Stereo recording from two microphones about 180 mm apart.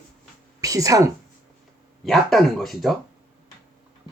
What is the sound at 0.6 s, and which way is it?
Speech, 20° right (ahead or behind).